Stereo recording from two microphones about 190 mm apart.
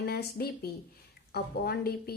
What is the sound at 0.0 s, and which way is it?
Speech, 55° left (ahead or behind).